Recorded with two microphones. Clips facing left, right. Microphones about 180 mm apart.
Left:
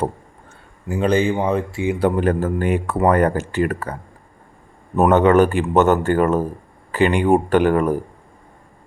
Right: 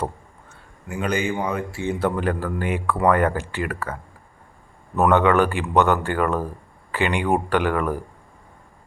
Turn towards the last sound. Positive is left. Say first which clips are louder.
# left 6 dB
turn(degrees=40)  # may be behind; listen again after turning